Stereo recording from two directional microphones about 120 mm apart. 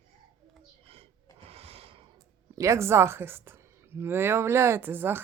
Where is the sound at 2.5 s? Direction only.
25° right (ahead or behind).